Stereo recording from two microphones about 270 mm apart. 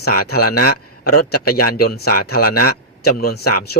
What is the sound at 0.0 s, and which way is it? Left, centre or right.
A man's voice, left.